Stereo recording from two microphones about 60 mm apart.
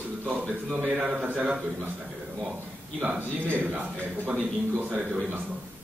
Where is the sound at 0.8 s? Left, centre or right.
Right.